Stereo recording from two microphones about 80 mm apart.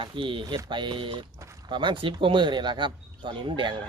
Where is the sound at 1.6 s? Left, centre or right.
Right.